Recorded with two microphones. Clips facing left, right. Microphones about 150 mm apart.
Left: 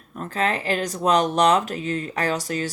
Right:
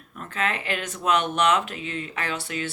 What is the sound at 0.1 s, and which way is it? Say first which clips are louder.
Speech: left 4 dB; 35° left (ahead or behind).